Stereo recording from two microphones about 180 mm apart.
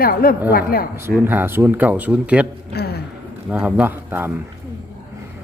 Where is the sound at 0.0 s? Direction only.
55° left (ahead or behind).